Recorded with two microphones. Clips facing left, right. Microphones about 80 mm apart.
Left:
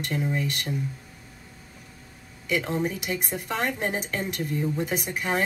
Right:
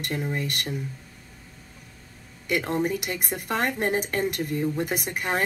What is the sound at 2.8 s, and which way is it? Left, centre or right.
A woman's voice, right.